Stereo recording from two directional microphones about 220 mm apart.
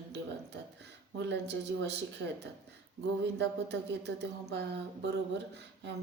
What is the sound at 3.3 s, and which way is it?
Speech, 50° right (ahead or behind).